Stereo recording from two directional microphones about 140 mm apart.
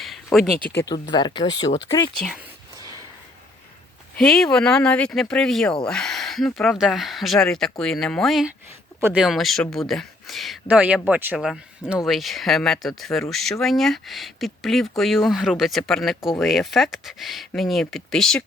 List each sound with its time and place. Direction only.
0.0 s a sound: centre (ahead or behind)
0.7 s speech: 15° left (ahead or behind)
0.9 s speech: 35° left (ahead or behind)
4.2 s speech: 5° left (ahead or behind)